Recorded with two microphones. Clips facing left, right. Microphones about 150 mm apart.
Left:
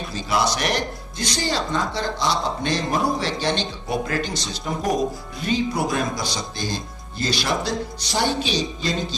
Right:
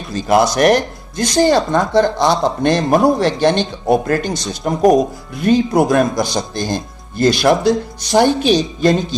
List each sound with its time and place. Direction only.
0.1 s speech: 50° right (ahead or behind)